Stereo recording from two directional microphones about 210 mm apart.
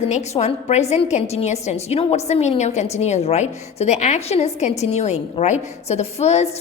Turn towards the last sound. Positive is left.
turn(degrees=30)  # may be behind; listen again after turning